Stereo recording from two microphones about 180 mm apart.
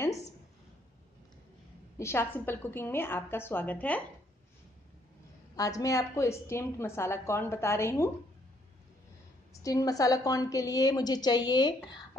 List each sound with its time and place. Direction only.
2.0 s a woman's voice: 15° left (ahead or behind)
5.6 s a woman's voice: 20° left (ahead or behind)
9.5 s a woman's voice: 20° left (ahead or behind)